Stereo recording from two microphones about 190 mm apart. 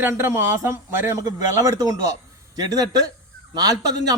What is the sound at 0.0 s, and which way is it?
A man's voice, 10° right (ahead or behind).